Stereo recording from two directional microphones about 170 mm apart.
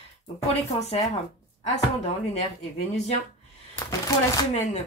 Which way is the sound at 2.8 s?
40° left (ahead or behind).